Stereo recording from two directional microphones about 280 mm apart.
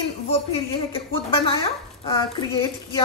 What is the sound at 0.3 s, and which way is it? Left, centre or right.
A woman's voice, left.